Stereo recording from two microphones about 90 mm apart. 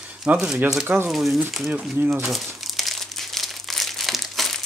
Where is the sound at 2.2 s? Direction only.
Centre (ahead or behind).